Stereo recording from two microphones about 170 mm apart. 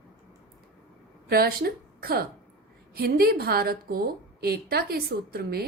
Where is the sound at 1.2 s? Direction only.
65° right (ahead or behind).